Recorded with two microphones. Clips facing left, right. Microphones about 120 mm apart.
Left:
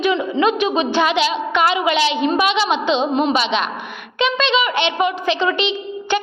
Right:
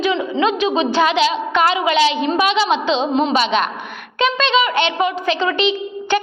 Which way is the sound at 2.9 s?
30° right (ahead or behind).